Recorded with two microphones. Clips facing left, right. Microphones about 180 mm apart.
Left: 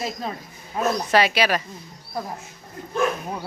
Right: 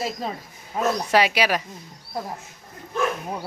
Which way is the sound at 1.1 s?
10° right (ahead or behind).